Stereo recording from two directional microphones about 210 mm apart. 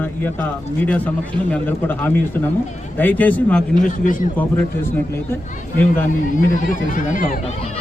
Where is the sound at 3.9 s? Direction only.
40° left (ahead or behind).